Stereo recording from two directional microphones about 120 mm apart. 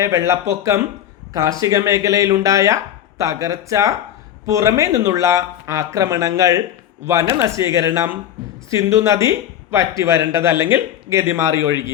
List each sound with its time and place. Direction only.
0.0 s speech: 25° right (ahead or behind)